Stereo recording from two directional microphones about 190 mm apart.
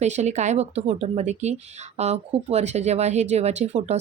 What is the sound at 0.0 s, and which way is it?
Speech, 35° right (ahead or behind).